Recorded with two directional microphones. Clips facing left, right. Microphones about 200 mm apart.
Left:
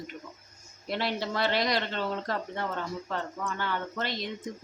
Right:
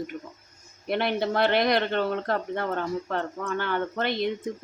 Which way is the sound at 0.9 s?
55° right (ahead or behind).